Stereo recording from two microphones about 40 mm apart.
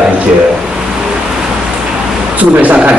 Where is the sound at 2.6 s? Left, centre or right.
Right.